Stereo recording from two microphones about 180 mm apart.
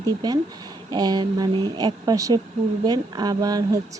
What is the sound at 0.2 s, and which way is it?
Speech, 20° right (ahead or behind).